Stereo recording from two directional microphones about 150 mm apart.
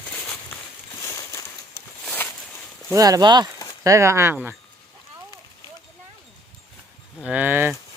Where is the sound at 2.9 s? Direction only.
25° right (ahead or behind).